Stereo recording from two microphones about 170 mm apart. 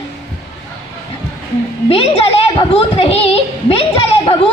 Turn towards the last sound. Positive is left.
turn(degrees=35)  # may be behind; listen again after turning